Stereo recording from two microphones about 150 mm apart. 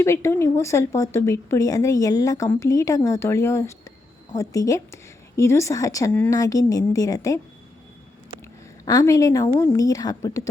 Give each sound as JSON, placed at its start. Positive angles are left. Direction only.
{"t": 0.0, "sound": "a woman's voice", "side_deg": 20}
{"t": 8.8, "sound": "speech", "side_deg": 20}